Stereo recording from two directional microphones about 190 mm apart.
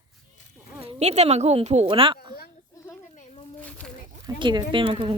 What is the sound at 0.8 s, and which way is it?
A woman's voice, 35° right (ahead or behind).